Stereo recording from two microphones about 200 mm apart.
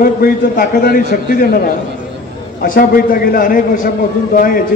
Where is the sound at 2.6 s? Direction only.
45° left (ahead or behind).